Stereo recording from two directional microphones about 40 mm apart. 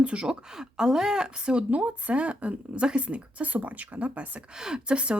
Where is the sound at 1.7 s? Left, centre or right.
Right.